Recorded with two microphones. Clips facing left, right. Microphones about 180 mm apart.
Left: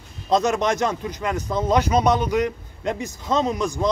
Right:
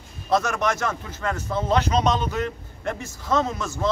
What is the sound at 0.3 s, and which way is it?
Speech, 20° left (ahead or behind).